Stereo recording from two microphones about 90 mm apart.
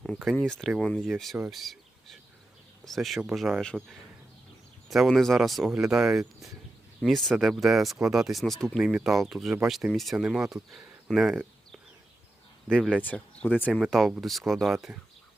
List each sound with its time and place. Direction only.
0.3 s speech: 10° left (ahead or behind)
4.9 s speech: centre (ahead or behind)
8.8 s speech: 10° right (ahead or behind)
9.0 s speech: centre (ahead or behind)
12.7 s speech: 10° left (ahead or behind)
13.7 s speech: 5° right (ahead or behind)